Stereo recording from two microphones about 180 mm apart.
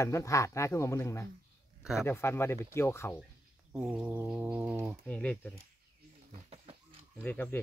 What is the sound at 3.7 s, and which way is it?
Speech, 5° right (ahead or behind).